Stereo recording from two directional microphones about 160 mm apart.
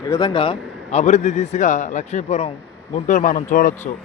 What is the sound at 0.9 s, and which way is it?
A man's voice, 45° left (ahead or behind).